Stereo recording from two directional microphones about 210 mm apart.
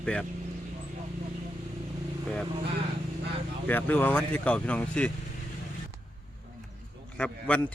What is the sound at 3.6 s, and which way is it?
Speech, 10° left (ahead or behind).